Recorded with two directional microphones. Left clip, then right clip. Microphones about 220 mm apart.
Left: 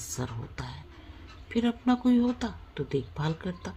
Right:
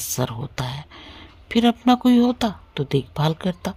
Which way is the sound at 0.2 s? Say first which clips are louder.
Right 11 dB; 55° right (ahead or behind).